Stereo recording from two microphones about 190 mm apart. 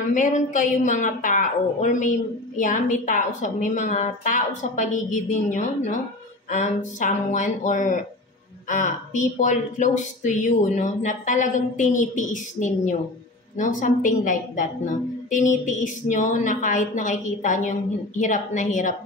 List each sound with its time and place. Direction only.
0.1 s a woman's voice: 40° left (ahead or behind)